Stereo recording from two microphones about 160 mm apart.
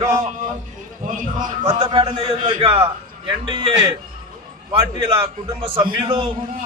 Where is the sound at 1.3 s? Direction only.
30° right (ahead or behind).